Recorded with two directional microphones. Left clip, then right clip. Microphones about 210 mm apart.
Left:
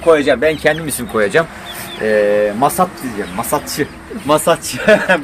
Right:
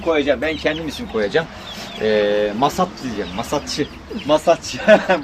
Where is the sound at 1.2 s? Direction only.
30° left (ahead or behind).